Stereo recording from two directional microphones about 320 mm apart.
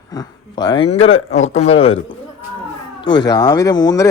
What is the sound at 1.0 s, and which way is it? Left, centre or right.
Speech, left.